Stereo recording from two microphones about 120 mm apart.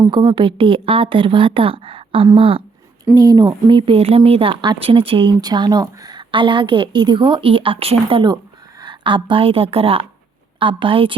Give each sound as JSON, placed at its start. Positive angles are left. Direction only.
{"t": 0.0, "sound": "speech", "side_deg": -35}
{"t": 3.2, "sound": "speech", "side_deg": -30}